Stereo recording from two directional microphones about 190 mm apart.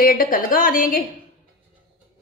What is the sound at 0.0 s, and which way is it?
Speech, 45° left (ahead or behind).